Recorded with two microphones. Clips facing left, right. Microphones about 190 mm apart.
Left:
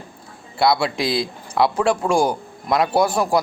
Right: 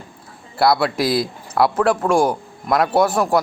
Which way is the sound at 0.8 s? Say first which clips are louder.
Right 3 dB; 25° left (ahead or behind).